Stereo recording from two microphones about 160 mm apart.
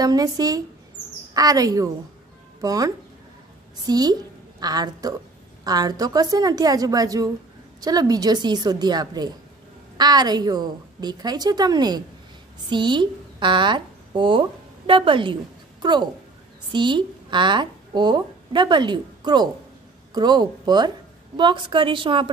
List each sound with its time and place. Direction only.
0.0 s a woman's voice: 25° right (ahead or behind)